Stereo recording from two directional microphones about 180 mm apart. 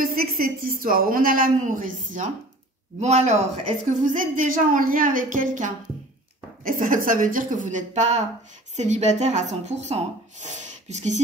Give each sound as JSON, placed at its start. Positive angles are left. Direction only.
{"t": 0.0, "sound": "a woman's voice", "side_deg": -55}